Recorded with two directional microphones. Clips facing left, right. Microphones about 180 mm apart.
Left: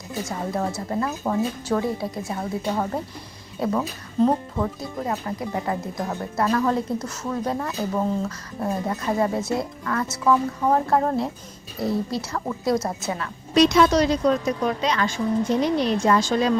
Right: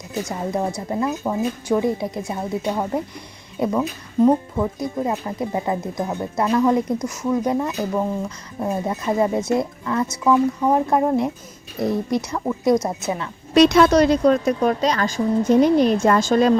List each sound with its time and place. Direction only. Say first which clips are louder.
0.3 s speech: right 2 dB; 20° right (ahead or behind)
13.5 s speech: right 4 dB; 60° right (ahead or behind)